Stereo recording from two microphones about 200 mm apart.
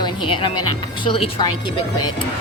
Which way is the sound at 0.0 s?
25° left (ahead or behind).